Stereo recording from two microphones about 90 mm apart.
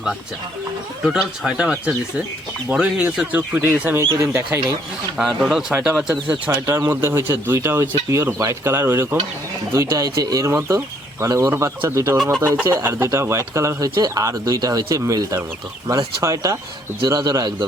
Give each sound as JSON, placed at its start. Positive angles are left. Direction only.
{"t": 1.0, "sound": "speech", "side_deg": -5}
{"t": 5.1, "sound": "speech", "side_deg": -5}
{"t": 6.8, "sound": "speech", "side_deg": -30}
{"t": 12.1, "sound": "speech", "side_deg": -5}
{"t": 12.4, "sound": "speech", "side_deg": -20}